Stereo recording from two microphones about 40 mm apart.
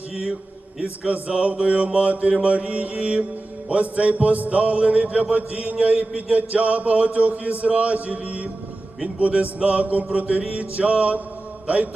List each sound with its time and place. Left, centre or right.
1.0 s music: right